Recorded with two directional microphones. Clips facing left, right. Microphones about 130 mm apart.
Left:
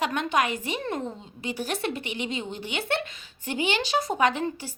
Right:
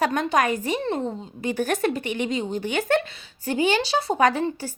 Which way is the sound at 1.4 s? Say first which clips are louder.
Right 7 dB; 50° right (ahead or behind).